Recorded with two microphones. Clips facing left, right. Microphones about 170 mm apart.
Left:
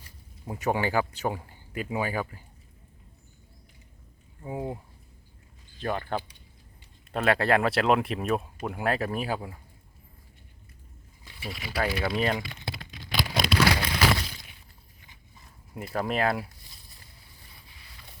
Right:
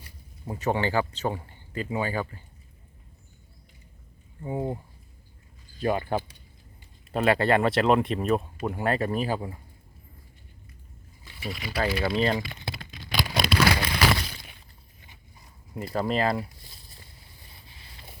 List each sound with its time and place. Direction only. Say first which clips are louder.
0.4 s speech: right 1 dB; 10° left (ahead or behind)
4.4 s speech: right 3 dB; 5° left (ahead or behind)
5.8 s speech: right 4 dB; 10° right (ahead or behind)
11.7 s speech: right 2 dB; 5° left (ahead or behind)
13.1 s a sound: right 1 dB; 55° right (ahead or behind)
15.9 s speech: right 1 dB; centre (ahead or behind)
17.7 s boat: right 3 dB; 30° right (ahead or behind)